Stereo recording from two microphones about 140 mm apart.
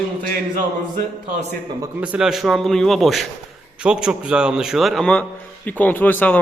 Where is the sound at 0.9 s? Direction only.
70° right (ahead or behind).